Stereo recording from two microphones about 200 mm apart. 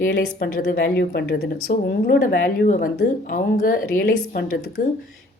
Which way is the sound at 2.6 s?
40° left (ahead or behind).